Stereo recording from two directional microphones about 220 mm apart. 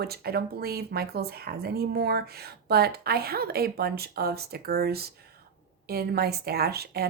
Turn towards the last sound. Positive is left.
turn(degrees=-45)  # may be behind; listen again after turning